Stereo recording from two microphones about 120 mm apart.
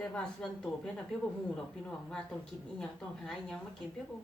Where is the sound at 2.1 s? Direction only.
5° left (ahead or behind).